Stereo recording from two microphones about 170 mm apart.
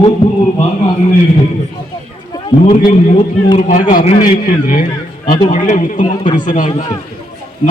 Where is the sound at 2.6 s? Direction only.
50° left (ahead or behind).